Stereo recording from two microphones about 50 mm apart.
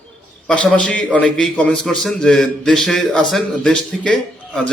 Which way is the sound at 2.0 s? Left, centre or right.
Centre.